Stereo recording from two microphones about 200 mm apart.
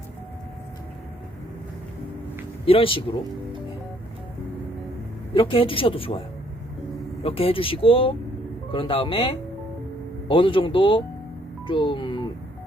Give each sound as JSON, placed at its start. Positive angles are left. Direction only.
{"t": 2.6, "sound": "speech", "side_deg": 25}
{"t": 5.3, "sound": "speech", "side_deg": 25}